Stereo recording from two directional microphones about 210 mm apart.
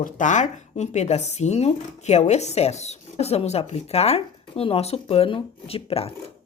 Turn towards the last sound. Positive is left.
turn(degrees=30)  # may be behind; listen again after turning